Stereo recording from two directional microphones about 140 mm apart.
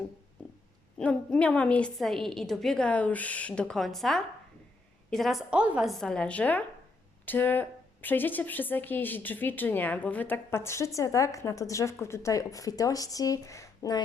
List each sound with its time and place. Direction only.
0.9 s a woman's voice: 10° left (ahead or behind); by 14.0 s 25° left (ahead or behind)